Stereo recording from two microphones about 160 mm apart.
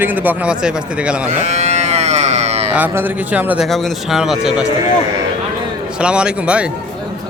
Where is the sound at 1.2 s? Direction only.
45° right (ahead or behind).